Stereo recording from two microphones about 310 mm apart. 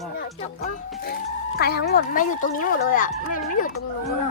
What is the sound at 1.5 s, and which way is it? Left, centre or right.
Speech, left.